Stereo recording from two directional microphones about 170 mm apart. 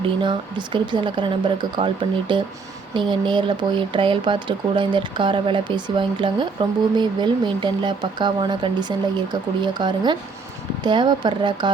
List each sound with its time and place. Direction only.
0.2 s speech: 25° right (ahead or behind)